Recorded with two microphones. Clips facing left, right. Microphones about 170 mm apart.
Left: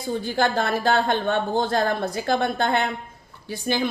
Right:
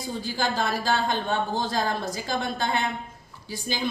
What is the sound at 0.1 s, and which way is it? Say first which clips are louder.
A woman's voice: left 6 dB; 60° left (ahead or behind).